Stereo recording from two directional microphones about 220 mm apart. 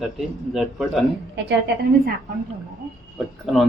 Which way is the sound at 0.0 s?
Centre (ahead or behind).